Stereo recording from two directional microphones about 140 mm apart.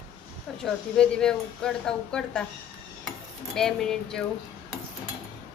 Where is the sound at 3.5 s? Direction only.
5° left (ahead or behind).